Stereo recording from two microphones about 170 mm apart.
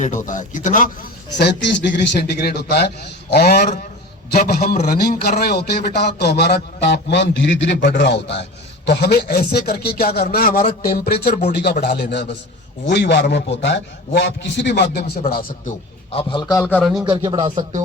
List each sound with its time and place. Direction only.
0.0 s speech: 50° left (ahead or behind)
1.4 s a man's voice: 90° left
8.9 s a man's voice: 70° left (ahead or behind)
12.8 s a man's voice: 85° left; by 15.1 s 70° left (ahead or behind)
15.3 s a man's voice: 60° left (ahead or behind)
16.1 s a man's voice: 25° left (ahead or behind)
17.0 s speech: 20° right (ahead or behind)